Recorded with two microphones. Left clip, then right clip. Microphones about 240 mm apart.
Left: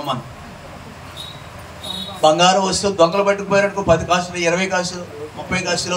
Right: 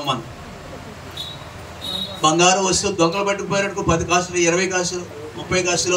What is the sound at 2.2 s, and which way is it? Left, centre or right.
A man's voice, left.